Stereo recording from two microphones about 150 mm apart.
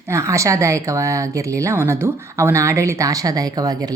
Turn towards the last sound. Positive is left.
turn(degrees=-25)  # may be behind; listen again after turning